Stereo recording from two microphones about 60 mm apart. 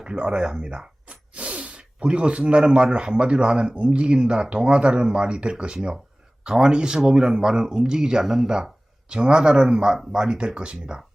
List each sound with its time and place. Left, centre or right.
0.0 s speech: centre